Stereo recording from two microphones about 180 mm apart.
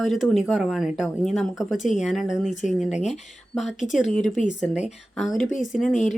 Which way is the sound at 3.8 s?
45° left (ahead or behind).